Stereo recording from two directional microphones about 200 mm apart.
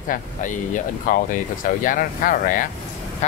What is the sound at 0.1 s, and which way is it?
Speech, 40° left (ahead or behind).